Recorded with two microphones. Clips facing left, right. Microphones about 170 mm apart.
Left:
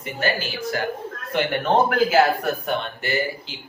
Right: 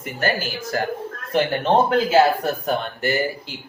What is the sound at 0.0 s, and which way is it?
Speech, 45° right (ahead or behind).